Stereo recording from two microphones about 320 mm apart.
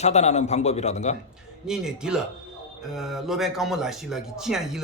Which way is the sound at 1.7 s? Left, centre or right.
Centre.